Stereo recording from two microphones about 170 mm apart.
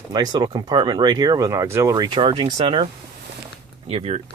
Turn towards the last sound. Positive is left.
turn(degrees=-35)  # may be behind; listen again after turning